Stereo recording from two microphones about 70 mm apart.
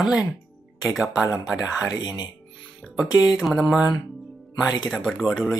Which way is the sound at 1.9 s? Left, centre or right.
Left.